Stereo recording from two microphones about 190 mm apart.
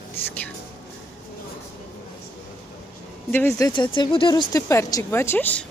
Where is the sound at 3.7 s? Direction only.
25° left (ahead or behind).